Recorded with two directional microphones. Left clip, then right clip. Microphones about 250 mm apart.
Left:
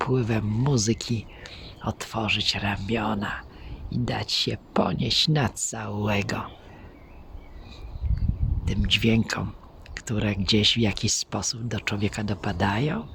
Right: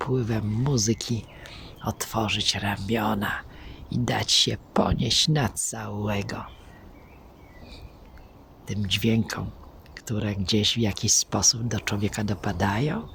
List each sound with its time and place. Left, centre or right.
0.0 s speech: centre
8.6 s speech: centre